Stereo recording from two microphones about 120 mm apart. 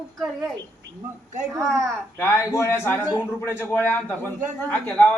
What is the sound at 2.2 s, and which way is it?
A man's voice, 25° left (ahead or behind).